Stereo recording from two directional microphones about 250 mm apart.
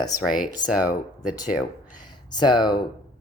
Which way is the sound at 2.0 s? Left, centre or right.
Centre.